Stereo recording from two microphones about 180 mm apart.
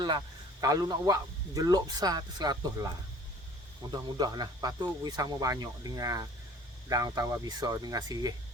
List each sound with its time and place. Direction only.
0.6 s speech: 20° right (ahead or behind)
3.9 s speech: 20° right (ahead or behind)